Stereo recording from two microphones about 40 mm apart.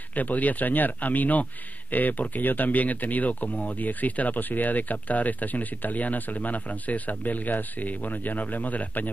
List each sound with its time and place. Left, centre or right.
0.1 s speech: left